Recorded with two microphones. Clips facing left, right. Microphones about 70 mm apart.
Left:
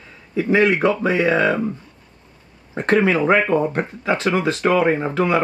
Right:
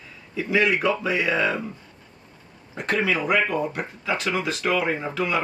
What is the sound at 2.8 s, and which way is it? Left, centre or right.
Speech, left.